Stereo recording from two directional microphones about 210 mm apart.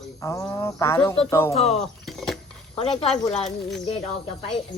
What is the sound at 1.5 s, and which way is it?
Speech, 30° left (ahead or behind).